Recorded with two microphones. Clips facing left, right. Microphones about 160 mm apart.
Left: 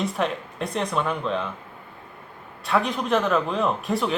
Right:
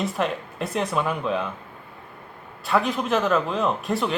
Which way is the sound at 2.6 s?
Centre (ahead or behind).